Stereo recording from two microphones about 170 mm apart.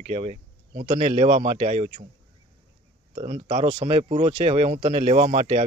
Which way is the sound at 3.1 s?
35° right (ahead or behind).